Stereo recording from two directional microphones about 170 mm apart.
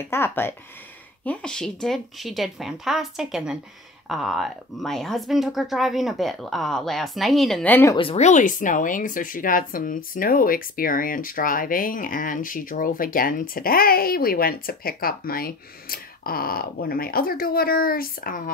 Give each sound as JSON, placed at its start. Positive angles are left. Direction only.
{"t": 0.1, "sound": "speech", "side_deg": 15}
{"t": 7.9, "sound": "speech", "side_deg": 35}